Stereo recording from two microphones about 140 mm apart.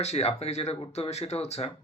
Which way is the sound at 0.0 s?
50° left (ahead or behind).